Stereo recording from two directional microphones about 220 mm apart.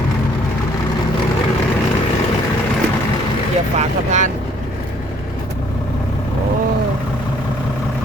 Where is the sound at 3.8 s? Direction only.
30° right (ahead or behind).